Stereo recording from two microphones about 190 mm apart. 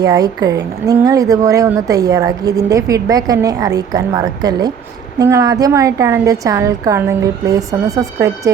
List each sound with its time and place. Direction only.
0.0 s a woman's voice: 20° right (ahead or behind)